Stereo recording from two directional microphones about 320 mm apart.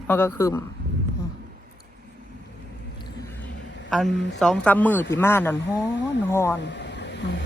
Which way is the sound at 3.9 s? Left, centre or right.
Centre.